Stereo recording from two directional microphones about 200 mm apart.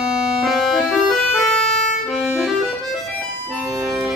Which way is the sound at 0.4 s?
Centre (ahead or behind).